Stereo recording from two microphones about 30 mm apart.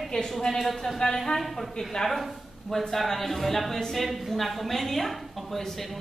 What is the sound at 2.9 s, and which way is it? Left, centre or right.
A man's voice, centre.